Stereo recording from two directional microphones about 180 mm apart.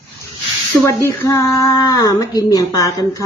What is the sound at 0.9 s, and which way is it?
Speech, 15° left (ahead or behind).